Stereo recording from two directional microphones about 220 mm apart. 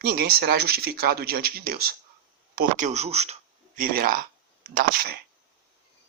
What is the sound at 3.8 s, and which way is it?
Speech, 40° right (ahead or behind).